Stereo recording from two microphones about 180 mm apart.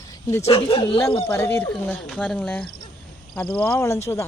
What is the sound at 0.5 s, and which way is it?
Speech, 30° left (ahead or behind).